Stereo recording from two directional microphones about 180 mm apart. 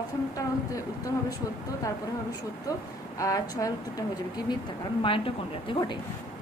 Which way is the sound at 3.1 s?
20° left (ahead or behind).